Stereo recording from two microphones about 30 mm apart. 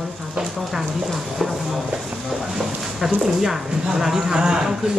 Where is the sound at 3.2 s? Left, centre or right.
Centre.